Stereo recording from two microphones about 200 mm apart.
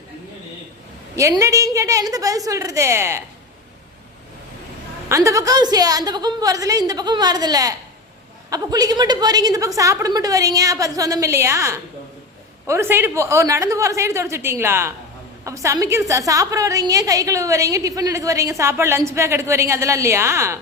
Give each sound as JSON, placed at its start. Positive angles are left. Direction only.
{"t": 1.1, "sound": "a woman's voice", "side_deg": -15}
{"t": 5.0, "sound": "a woman's voice", "side_deg": -15}